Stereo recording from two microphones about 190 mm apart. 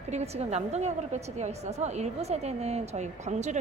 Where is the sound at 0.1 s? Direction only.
35° right (ahead or behind).